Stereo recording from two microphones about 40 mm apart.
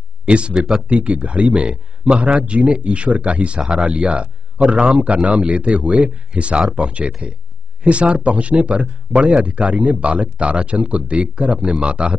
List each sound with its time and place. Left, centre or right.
0.2 s speech: right